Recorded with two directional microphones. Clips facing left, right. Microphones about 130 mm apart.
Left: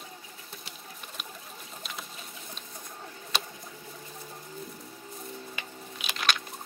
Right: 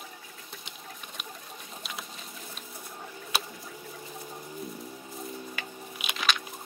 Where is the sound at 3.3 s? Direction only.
5° right (ahead or behind).